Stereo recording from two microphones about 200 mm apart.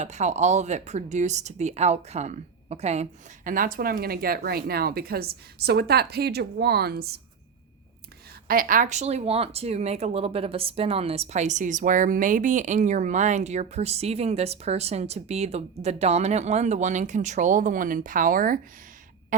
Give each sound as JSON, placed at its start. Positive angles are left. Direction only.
{"t": 0.0, "sound": "speech", "side_deg": -35}
{"t": 8.4, "sound": "speech", "side_deg": -45}